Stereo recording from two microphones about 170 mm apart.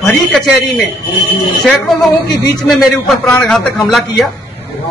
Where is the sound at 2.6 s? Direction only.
Centre (ahead or behind).